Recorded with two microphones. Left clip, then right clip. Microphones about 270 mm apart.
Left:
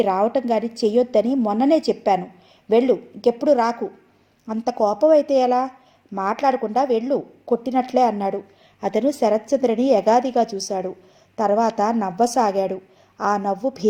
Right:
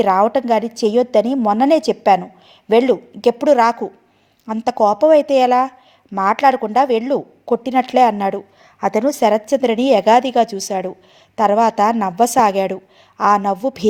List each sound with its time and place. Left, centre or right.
0.0 s a woman's voice: right
10.4 s a woman's voice: right
10.7 s a woman's voice: right